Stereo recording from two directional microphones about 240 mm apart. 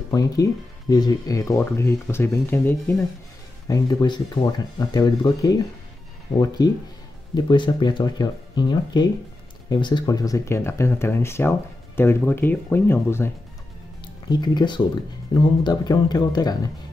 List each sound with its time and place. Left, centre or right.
0.1 s speech: centre